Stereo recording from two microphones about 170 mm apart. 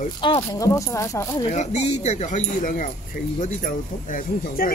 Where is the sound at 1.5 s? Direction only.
40° left (ahead or behind).